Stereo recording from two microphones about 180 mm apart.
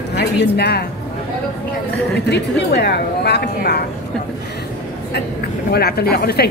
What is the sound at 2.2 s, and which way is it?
A woman's voice, 70° left (ahead or behind).